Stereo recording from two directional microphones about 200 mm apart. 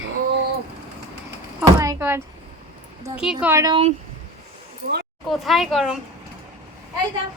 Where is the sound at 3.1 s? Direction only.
5° right (ahead or behind).